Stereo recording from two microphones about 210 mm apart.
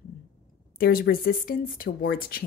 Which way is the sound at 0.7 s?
45° left (ahead or behind).